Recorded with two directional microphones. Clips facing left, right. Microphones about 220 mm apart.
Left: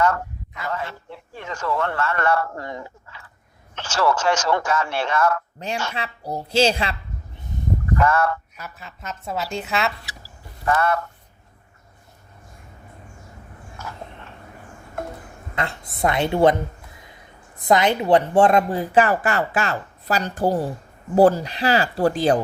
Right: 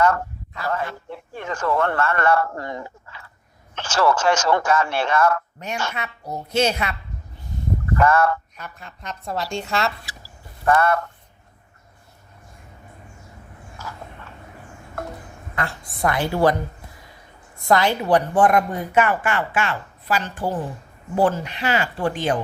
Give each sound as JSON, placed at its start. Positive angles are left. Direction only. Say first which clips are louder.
{"t": 0.7, "sound": "speech", "louder": "right 3 dB", "side_deg": -55}
{"t": 5.5, "sound": "a woman's voice", "louder": "left 1 dB", "side_deg": 30}
{"t": 8.0, "sound": "speech", "louder": "right 3 dB", "side_deg": -55}
{"t": 8.5, "sound": "a woman's voice", "louder": "even", "side_deg": 5}
{"t": 10.7, "sound": "speech", "louder": "right 2 dB", "side_deg": -55}
{"t": 15.5, "sound": "a woman's voice", "louder": "left 1 dB", "side_deg": 20}
{"t": 17.6, "sound": "a woman's voice", "louder": "left 1 dB", "side_deg": 20}